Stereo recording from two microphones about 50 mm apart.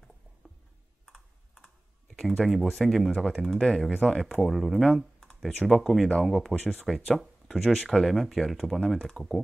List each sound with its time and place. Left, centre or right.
1.0 s computer keyboard: centre
3.4 s speech: centre